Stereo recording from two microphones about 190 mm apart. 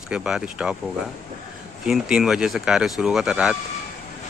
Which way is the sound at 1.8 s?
5° right (ahead or behind).